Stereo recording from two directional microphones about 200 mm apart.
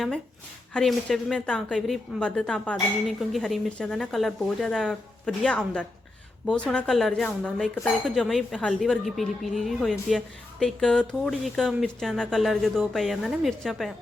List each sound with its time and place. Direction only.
0.7 s a woman's voice: 5° left (ahead or behind)